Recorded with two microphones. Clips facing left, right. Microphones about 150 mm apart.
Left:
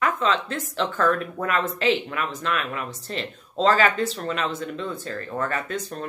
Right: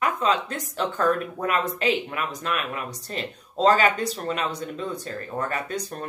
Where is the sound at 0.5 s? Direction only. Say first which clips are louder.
Left 1 dB; 40° right (ahead or behind).